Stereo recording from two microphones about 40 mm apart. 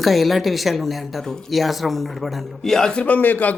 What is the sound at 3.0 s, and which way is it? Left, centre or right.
Speech, left.